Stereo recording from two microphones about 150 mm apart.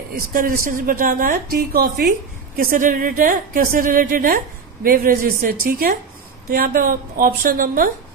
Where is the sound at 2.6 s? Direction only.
65° right (ahead or behind).